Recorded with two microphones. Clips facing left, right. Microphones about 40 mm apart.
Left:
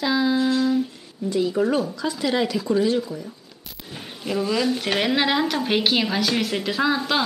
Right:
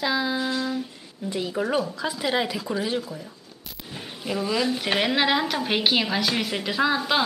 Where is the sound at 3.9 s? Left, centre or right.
Centre.